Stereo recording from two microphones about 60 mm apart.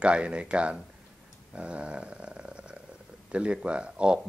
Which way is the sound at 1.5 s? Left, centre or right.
Centre.